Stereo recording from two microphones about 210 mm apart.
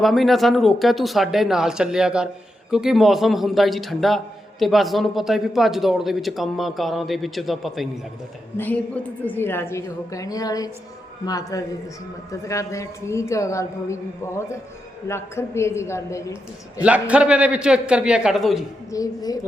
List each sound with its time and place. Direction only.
0.0 s a woman's voice: centre (ahead or behind)
16.8 s speech: 5° right (ahead or behind)
18.9 s a woman's voice: 15° left (ahead or behind)